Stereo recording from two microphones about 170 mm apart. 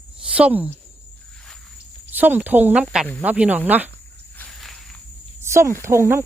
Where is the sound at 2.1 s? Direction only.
10° right (ahead or behind).